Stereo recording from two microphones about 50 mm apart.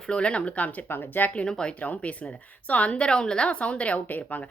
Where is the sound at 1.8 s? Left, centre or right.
Left.